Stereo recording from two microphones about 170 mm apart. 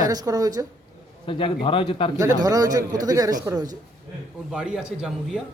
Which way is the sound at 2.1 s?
20° right (ahead or behind).